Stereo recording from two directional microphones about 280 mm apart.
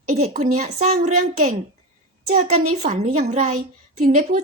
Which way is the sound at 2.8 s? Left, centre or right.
Right.